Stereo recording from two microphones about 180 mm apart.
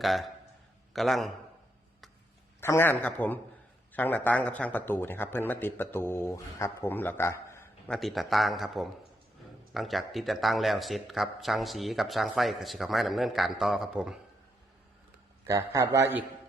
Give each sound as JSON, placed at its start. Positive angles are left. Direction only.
{"t": 0.0, "sound": "a man's voice", "side_deg": 0}
{"t": 2.6, "sound": "speech", "side_deg": 15}
{"t": 7.9, "sound": "a man's voice", "side_deg": 0}
{"t": 15.4, "sound": "a man's voice", "side_deg": -15}